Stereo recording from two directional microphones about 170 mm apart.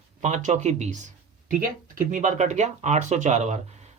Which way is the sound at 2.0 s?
45° right (ahead or behind).